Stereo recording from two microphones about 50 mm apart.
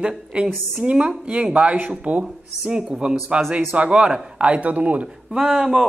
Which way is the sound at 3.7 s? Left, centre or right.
Right.